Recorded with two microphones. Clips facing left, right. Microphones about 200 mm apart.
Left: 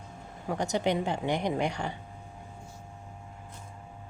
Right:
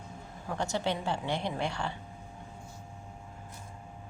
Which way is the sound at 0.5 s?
15° left (ahead or behind).